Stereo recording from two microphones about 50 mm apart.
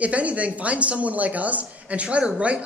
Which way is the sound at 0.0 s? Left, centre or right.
Right.